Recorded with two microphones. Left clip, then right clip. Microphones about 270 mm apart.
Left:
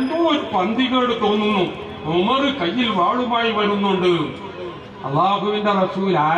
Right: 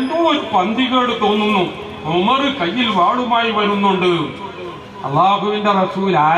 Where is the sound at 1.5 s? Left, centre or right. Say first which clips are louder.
Right 3 dB; left.